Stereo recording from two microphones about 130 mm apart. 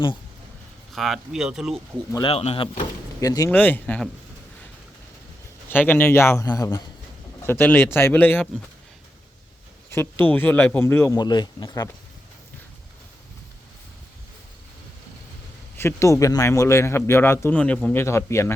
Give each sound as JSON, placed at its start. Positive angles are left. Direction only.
{"t": 0.9, "sound": "speech", "side_deg": 0}
{"t": 2.2, "sound": "speech", "side_deg": 50}
{"t": 3.2, "sound": "speech", "side_deg": 25}
{"t": 3.5, "sound": "speech", "side_deg": 15}
{"t": 5.6, "sound": "speech", "side_deg": 15}
{"t": 7.4, "sound": "speech", "side_deg": 15}
{"t": 9.9, "sound": "speech", "side_deg": 15}
{"t": 11.1, "sound": "speech", "side_deg": 30}
{"t": 15.8, "sound": "speech", "side_deg": 20}